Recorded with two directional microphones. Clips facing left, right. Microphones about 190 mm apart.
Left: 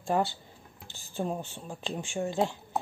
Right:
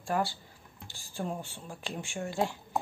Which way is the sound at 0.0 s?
20° left (ahead or behind).